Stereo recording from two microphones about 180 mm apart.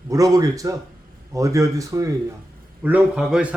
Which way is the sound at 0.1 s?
20° right (ahead or behind).